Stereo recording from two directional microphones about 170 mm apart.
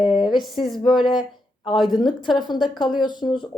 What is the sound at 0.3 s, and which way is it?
Speech, centre (ahead or behind).